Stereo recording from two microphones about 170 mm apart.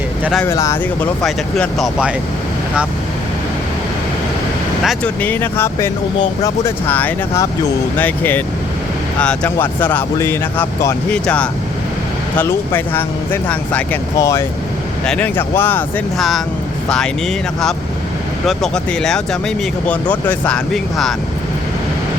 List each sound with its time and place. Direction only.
0.4 s speech: 20° left (ahead or behind)
1.2 s speech: 5° left (ahead or behind)
4.8 s speech: centre (ahead or behind)
5.2 s speech: 10° left (ahead or behind)
15.0 s speech: 5° left (ahead or behind)
16.1 s speech: centre (ahead or behind)
18.4 s speech: 5° left (ahead or behind)